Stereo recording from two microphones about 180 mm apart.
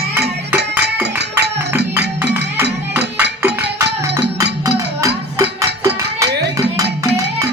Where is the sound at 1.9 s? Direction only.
10° right (ahead or behind).